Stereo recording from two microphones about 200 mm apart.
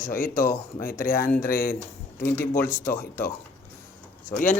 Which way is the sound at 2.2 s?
10° left (ahead or behind).